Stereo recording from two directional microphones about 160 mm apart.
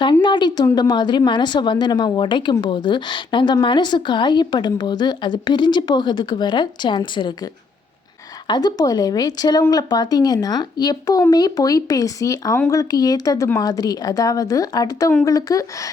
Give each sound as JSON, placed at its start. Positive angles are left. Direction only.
{"t": 0.0, "sound": "a sound", "side_deg": 30}
{"t": 0.8, "sound": "speech", "side_deg": 25}
{"t": 8.4, "sound": "speech", "side_deg": 25}